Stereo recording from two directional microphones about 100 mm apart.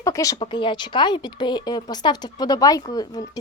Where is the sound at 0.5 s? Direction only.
50° left (ahead or behind).